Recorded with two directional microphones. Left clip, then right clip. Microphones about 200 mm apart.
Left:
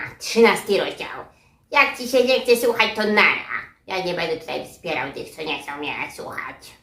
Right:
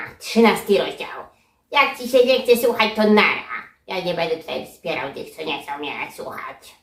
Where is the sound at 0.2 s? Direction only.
20° left (ahead or behind).